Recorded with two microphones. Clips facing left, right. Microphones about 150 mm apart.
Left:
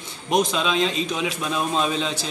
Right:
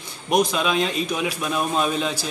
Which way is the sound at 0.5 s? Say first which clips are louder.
Even; 10° right (ahead or behind).